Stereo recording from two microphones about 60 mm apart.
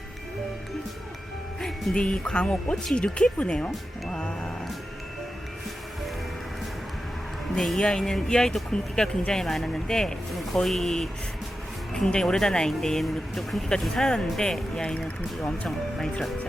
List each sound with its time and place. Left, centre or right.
1.6 s speech: centre
4.1 s music: centre
7.5 s speech: centre